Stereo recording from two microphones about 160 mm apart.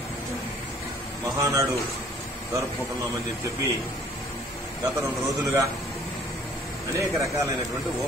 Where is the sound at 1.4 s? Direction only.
20° right (ahead or behind).